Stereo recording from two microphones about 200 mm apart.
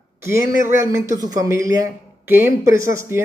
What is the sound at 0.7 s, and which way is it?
Speech, 15° right (ahead or behind).